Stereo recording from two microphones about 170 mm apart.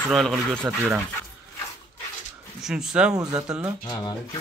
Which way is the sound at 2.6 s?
5° right (ahead or behind).